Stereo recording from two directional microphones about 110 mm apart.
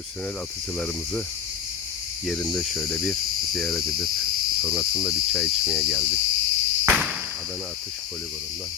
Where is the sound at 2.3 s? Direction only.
5° left (ahead or behind).